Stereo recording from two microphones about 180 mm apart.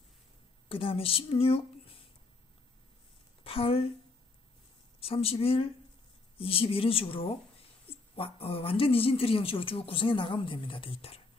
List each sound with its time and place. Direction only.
0.7 s speech: 30° left (ahead or behind)
3.4 s a woman's voice: 30° left (ahead or behind)
5.0 s speech: 30° left (ahead or behind)